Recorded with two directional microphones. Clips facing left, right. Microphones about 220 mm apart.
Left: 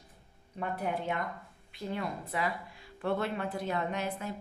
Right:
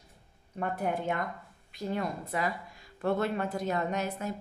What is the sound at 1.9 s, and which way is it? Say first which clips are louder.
A woman's voice: right 3 dB; 45° right (ahead or behind).